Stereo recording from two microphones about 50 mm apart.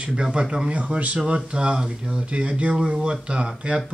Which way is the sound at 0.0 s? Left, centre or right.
Centre.